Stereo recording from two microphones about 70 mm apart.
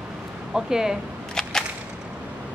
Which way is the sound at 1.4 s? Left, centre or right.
Centre.